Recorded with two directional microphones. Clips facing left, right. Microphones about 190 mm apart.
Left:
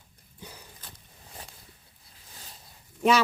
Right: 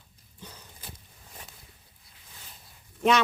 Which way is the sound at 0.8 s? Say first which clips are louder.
Right 3 dB; 10° right (ahead or behind).